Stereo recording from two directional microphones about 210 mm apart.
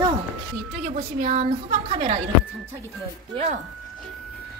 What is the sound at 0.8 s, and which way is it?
A woman's voice, 30° right (ahead or behind).